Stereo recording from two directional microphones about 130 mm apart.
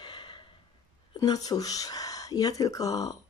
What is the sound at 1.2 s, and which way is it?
Speech, 30° left (ahead or behind).